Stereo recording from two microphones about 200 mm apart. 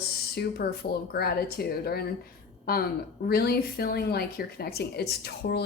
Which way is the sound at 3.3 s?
50° left (ahead or behind).